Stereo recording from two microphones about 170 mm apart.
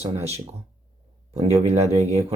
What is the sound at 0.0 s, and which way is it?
Speech, 40° right (ahead or behind).